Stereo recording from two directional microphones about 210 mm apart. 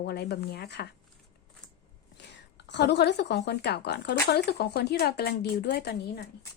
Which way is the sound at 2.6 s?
55° left (ahead or behind).